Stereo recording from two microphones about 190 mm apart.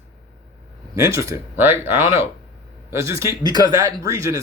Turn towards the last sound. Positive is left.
turn(degrees=-15)  # may be behind; listen again after turning